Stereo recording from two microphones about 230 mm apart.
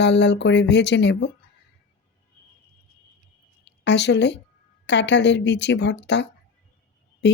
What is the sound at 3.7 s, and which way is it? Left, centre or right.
A woman's voice, left.